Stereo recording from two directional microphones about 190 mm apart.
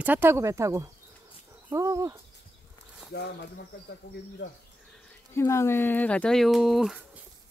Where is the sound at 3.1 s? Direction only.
60° left (ahead or behind).